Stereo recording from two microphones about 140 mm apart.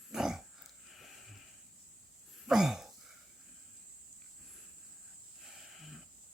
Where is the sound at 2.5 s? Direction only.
5° right (ahead or behind).